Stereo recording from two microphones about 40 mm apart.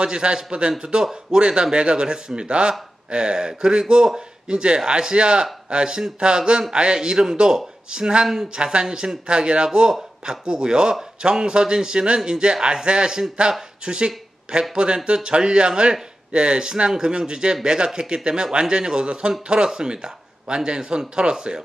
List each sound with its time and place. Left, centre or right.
0.0 s speech: right